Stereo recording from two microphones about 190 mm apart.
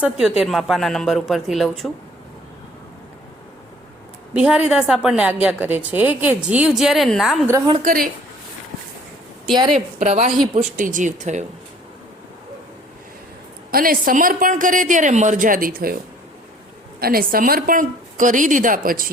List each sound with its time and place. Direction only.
0.0 s a woman's voice: 5° right (ahead or behind)
4.4 s a woman's voice: 5° right (ahead or behind)
7.8 s a woman's voice: 50° right (ahead or behind)
9.5 s a woman's voice: 25° right (ahead or behind)
9.7 s speech: 35° right (ahead or behind)
13.7 s a woman's voice: 50° right (ahead or behind)
17.0 s a woman's voice: 50° right (ahead or behind)